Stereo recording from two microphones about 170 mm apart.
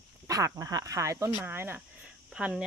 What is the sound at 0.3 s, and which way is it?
Speech, 20° right (ahead or behind).